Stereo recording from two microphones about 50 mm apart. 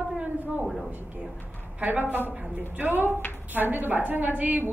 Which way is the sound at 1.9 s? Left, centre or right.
Right.